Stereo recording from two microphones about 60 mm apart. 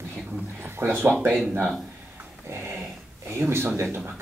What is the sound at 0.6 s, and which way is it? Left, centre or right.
Speech, right.